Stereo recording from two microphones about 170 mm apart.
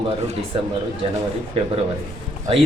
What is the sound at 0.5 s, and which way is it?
Speech, 35° right (ahead or behind).